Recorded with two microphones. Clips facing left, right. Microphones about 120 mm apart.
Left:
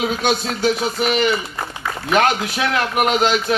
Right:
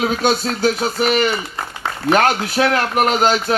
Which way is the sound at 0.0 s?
40° right (ahead or behind).